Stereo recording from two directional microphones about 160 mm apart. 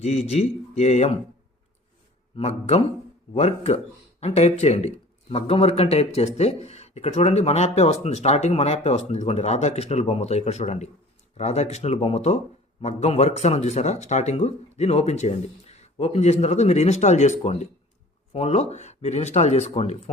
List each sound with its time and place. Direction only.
0.0 s speech: 40° left (ahead or behind)
2.3 s a man's voice: 45° left (ahead or behind)